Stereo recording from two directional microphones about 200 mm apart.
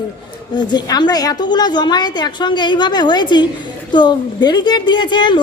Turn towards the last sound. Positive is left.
turn(degrees=20)  # may be behind; listen again after turning